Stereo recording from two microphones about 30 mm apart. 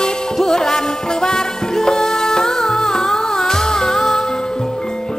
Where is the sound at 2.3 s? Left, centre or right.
Centre.